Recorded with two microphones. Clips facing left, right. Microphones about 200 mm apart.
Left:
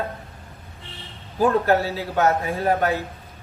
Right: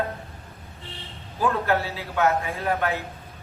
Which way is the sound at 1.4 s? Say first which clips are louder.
Left 5 dB; 40° left (ahead or behind).